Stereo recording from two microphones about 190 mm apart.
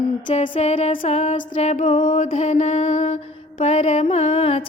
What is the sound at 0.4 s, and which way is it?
Music, 35° left (ahead or behind).